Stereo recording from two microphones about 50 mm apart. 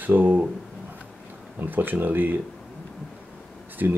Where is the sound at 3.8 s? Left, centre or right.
Right.